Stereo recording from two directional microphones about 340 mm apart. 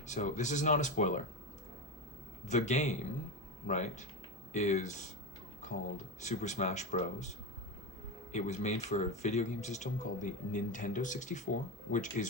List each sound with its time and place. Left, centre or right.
0.1 s speech: left
2.5 s speech: left
6.1 s speech: left
8.3 s speech: left